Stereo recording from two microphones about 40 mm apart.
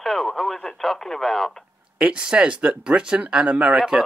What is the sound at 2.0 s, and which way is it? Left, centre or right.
Speech, right.